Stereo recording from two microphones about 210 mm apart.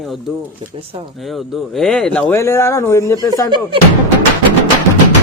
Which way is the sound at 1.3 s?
Centre (ahead or behind).